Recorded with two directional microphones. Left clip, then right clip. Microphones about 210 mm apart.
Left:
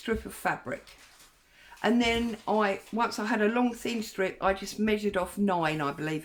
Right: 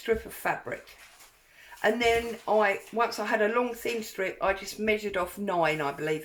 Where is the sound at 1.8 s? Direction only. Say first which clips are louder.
Right 2 dB; 30° left (ahead or behind).